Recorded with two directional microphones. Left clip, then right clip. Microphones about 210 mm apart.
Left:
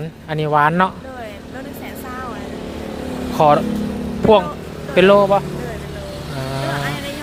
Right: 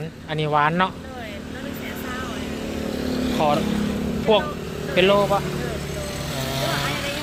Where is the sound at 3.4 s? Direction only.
30° left (ahead or behind).